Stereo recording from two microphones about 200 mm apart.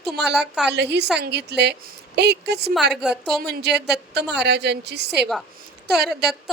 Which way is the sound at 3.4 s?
55° right (ahead or behind).